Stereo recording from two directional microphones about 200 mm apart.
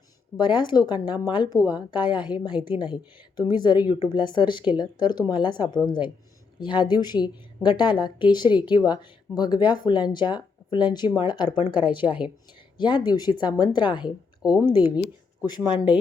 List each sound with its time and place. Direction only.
0.3 s speech: 20° left (ahead or behind)
2.5 s speech: 5° right (ahead or behind)
2.9 s speech: 20° left (ahead or behind)
12.0 s speech: 5° right (ahead or behind)
12.7 s speech: 20° left (ahead or behind)
14.8 s speech: 5° right (ahead or behind)